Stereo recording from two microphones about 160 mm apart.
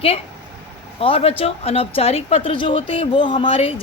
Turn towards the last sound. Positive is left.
turn(degrees=35)  # may be behind; listen again after turning